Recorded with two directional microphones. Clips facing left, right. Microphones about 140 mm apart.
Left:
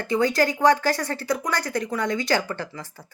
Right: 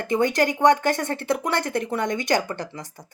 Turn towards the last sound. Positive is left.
turn(degrees=-20)  # may be behind; listen again after turning